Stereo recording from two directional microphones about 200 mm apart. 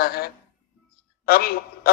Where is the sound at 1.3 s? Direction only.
50° left (ahead or behind).